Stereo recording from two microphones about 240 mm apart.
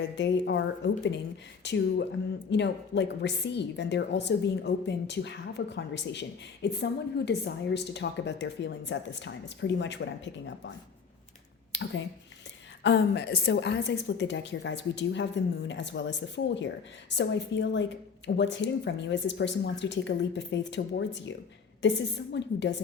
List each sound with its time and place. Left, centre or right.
0.2 s a woman's voice: left
1.6 s a woman's voice: left
11.7 s a sound: left
12.8 s a woman's voice: left